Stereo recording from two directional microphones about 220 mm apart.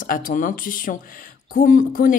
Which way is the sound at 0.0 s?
35° left (ahead or behind).